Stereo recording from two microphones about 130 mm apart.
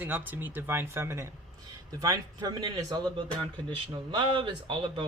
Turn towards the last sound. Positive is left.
turn(degrees=-40)  # may be behind; listen again after turning